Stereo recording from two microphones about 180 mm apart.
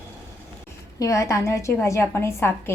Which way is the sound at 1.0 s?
15° left (ahead or behind).